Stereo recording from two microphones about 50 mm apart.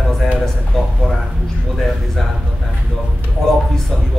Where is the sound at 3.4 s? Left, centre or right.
Centre.